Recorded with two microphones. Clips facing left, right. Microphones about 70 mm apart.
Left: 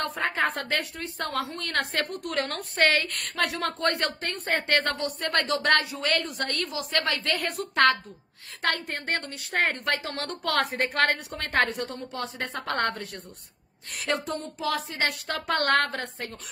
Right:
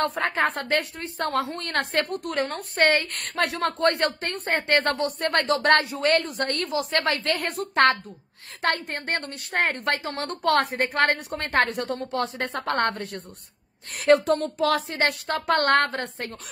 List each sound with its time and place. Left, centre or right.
0.0 s a woman's voice: right
2.3 s a woman's voice: centre
2.7 s a woman's voice: right
10.8 s a woman's voice: right
11.1 s a woman's voice: right
11.7 s speech: right
12.5 s a woman's voice: right
14.2 s speech: right
15.0 s a woman's voice: right